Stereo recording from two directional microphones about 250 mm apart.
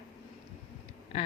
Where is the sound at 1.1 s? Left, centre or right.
Left.